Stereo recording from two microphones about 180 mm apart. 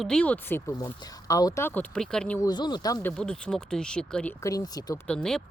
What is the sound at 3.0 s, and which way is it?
Speech, 5° left (ahead or behind).